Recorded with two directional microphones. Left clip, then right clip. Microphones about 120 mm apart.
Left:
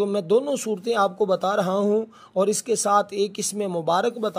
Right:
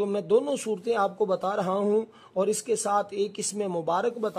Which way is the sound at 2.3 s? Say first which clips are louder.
Left 4 dB; 20° left (ahead or behind).